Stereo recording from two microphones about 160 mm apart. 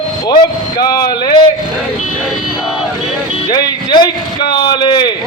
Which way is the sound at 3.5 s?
25° left (ahead or behind).